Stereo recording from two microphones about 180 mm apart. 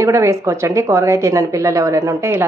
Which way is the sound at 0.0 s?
15° right (ahead or behind).